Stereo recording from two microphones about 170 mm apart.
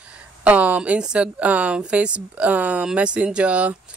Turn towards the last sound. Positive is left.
turn(degrees=-5)  # may be behind; listen again after turning